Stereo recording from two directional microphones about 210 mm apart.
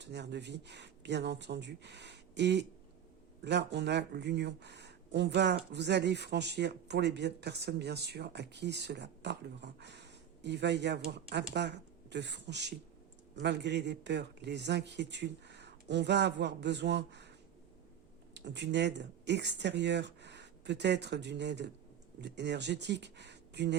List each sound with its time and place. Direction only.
0.0 s a man's voice: 55° right (ahead or behind)
18.3 s a man's voice: 55° right (ahead or behind)